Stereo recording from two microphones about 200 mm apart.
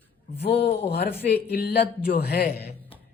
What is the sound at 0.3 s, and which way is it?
Speech, 30° left (ahead or behind).